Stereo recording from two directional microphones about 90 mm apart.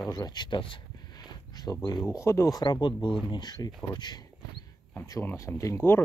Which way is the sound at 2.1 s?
35° left (ahead or behind).